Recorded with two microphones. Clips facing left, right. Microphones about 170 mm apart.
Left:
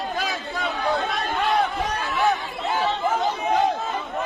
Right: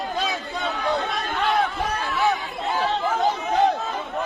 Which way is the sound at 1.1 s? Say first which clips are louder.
Left 1 dB; centre (ahead or behind).